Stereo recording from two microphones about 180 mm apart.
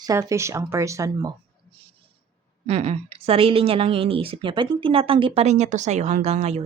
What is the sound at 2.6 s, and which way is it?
A woman's voice, 35° right (ahead or behind).